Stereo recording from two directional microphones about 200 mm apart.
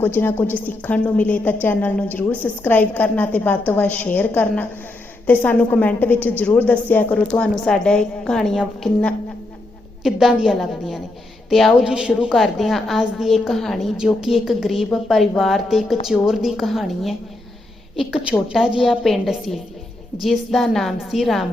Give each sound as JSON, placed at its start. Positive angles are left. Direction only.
{"t": 0.0, "sound": "a woman's voice", "side_deg": 10}